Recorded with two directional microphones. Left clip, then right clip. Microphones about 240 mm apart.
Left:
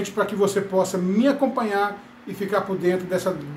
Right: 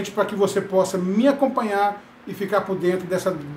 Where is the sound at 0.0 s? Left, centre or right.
Centre.